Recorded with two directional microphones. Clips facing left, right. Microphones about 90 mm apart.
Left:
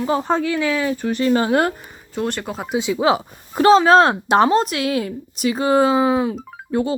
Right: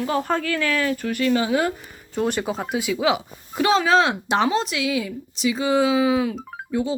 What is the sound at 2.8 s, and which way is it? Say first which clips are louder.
Speech: left 5 dB; 30° left (ahead or behind).